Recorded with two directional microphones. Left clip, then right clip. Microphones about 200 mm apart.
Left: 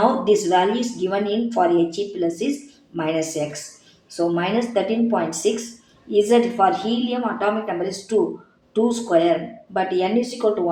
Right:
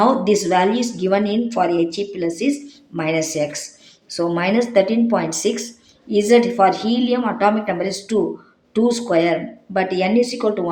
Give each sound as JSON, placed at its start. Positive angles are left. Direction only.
{"t": 0.3, "sound": "a woman's voice", "side_deg": -40}